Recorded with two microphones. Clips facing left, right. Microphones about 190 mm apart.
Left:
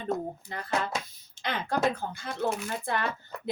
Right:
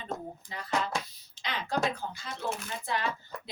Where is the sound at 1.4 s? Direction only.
55° left (ahead or behind).